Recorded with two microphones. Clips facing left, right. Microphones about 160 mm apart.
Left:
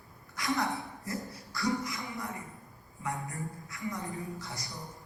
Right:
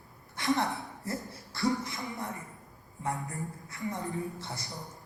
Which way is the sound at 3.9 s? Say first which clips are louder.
Right 2 dB; centre (ahead or behind).